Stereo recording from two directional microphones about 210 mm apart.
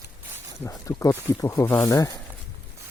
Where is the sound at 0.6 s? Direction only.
15° left (ahead or behind).